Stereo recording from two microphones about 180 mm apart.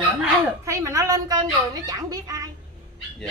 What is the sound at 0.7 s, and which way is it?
A woman's voice, 15° right (ahead or behind).